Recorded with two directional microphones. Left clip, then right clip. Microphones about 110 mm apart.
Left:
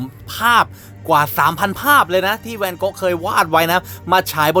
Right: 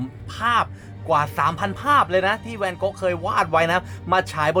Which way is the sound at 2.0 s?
30° left (ahead or behind).